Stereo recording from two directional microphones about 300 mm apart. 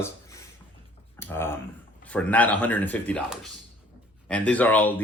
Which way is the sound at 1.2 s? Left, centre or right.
Centre.